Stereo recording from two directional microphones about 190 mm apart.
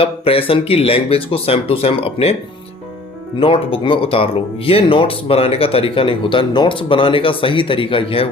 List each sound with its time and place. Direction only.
0.0 s speech: 30° left (ahead or behind)
3.4 s speech: 30° left (ahead or behind)